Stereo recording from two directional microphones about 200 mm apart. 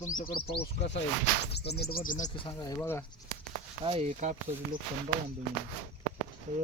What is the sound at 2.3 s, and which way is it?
Speech, 20° left (ahead or behind).